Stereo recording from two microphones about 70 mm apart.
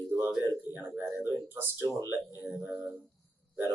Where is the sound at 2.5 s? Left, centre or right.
Right.